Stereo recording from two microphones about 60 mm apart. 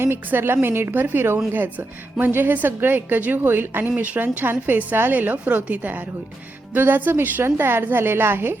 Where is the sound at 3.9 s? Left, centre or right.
Right.